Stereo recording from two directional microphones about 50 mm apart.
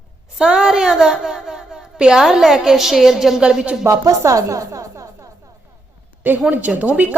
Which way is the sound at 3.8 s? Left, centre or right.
Right.